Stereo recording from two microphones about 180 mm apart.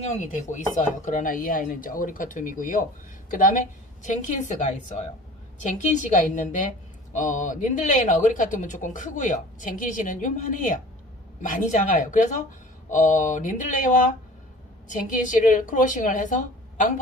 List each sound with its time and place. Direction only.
0.0 s a woman's voice: 40° left (ahead or behind)